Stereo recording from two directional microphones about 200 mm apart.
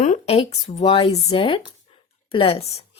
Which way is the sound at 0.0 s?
35° left (ahead or behind).